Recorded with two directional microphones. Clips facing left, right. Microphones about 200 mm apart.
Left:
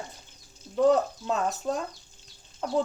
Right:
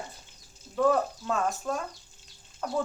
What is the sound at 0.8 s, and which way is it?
Speech, 20° left (ahead or behind).